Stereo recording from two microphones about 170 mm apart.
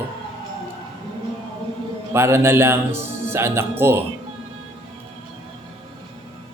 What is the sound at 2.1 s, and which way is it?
Speech, 15° right (ahead or behind).